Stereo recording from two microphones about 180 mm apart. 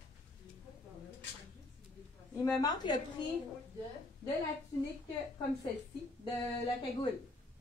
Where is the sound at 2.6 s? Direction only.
20° left (ahead or behind).